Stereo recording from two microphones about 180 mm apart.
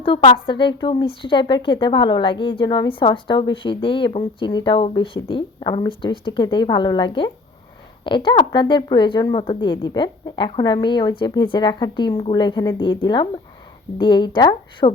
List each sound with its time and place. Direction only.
0.0 s a woman's voice: 30° left (ahead or behind)